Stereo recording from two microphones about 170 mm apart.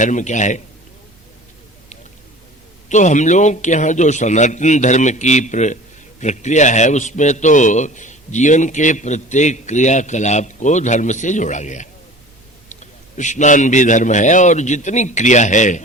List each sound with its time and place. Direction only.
0.0 s a man's voice: 45° left (ahead or behind)
2.9 s a man's voice: 45° left (ahead or behind)